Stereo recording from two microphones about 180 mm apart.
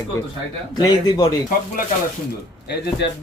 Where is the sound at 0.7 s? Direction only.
20° left (ahead or behind).